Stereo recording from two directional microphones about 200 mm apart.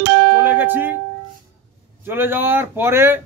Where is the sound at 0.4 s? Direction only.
10° right (ahead or behind).